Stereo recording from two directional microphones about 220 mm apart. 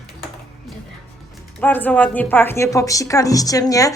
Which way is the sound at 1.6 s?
10° left (ahead or behind).